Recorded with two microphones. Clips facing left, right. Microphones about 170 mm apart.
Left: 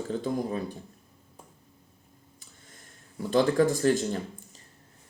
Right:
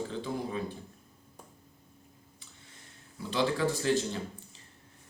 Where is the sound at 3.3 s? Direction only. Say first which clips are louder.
Left 6 dB; 45° left (ahead or behind).